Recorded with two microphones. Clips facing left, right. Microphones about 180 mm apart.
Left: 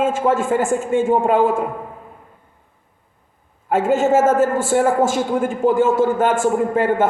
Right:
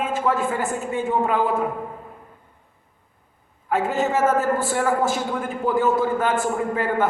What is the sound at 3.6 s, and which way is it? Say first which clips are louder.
A man's voice: left 6 dB; 45° left (ahead or behind).